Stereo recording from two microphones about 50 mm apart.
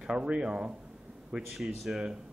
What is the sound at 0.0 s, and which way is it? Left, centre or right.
Speech, centre.